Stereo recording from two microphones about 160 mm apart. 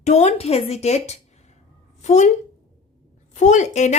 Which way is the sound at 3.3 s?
50° left (ahead or behind).